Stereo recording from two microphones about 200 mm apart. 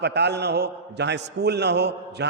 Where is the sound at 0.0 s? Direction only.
55° right (ahead or behind).